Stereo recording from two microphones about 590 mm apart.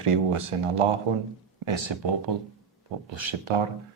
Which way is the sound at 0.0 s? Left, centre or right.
Right.